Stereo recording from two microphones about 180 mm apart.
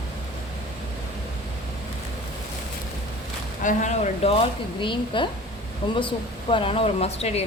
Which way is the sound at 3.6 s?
45° left (ahead or behind).